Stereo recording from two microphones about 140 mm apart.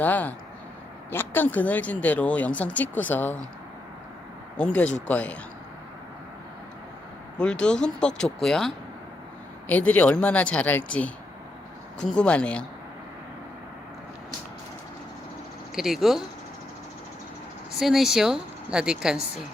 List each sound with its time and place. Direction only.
0.0 s speech: 10° left (ahead or behind)
4.5 s speech: 5° left (ahead or behind)
7.3 s a woman's voice: 5° left (ahead or behind)
15.7 s a woman's voice: centre (ahead or behind)
17.7 s a woman's voice: centre (ahead or behind)